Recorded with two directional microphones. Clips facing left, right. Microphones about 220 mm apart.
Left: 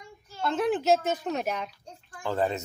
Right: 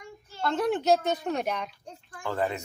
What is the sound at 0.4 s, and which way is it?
Speech, 5° left (ahead or behind).